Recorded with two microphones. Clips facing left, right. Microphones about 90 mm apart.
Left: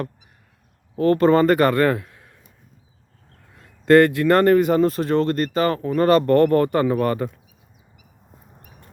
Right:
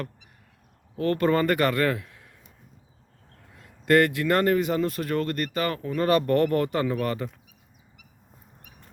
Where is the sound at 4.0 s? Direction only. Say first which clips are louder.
Left 6 dB; 50° left (ahead or behind).